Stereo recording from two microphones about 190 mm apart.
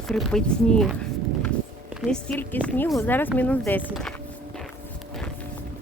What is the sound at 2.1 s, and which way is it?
Speech, 5° left (ahead or behind).